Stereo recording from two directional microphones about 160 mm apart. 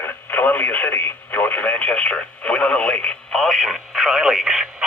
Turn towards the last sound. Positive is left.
turn(degrees=-5)  # may be behind; listen again after turning